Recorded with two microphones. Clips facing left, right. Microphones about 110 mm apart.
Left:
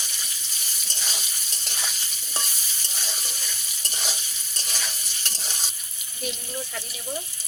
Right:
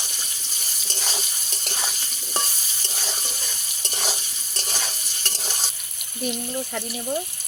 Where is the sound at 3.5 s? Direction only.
40° right (ahead or behind).